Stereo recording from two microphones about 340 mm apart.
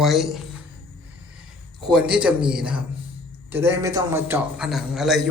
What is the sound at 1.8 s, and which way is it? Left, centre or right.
A man's voice, centre.